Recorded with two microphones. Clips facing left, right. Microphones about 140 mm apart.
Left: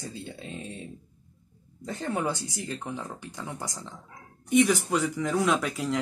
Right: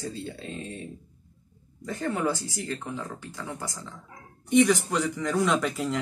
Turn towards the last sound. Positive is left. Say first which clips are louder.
# even
turn(degrees=0)  # may be behind; listen again after turning